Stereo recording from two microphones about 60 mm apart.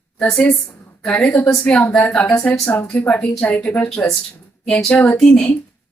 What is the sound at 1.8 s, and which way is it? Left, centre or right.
A woman's voice, left.